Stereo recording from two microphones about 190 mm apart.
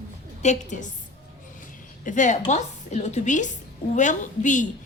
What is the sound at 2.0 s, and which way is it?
A woman's voice, 40° left (ahead or behind).